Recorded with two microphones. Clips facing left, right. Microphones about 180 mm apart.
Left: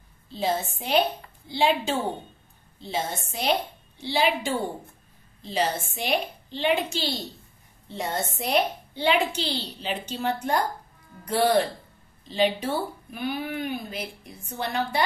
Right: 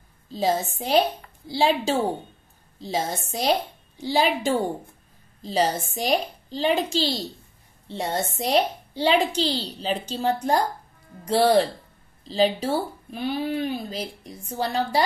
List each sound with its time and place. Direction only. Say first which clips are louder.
0.3 s speech: right 3 dB; 40° right (ahead or behind)